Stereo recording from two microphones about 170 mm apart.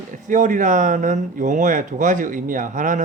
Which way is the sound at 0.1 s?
50° right (ahead or behind).